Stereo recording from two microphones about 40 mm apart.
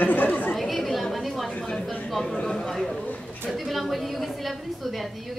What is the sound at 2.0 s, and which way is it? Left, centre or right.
Speech, centre.